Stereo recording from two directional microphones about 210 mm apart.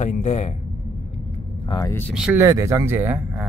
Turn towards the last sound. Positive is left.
turn(degrees=-10)  # may be behind; listen again after turning